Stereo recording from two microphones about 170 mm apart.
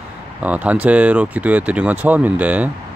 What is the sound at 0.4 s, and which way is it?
Speech, 10° right (ahead or behind).